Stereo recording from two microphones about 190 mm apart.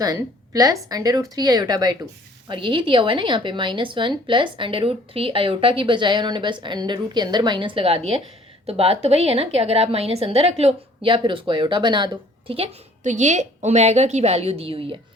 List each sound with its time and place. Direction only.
0.0 s a woman's voice: 20° right (ahead or behind)